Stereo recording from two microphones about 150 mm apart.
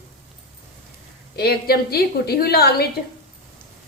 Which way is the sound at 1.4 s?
90° left.